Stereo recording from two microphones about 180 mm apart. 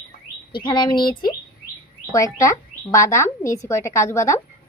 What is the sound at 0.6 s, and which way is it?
Speech, 25° left (ahead or behind).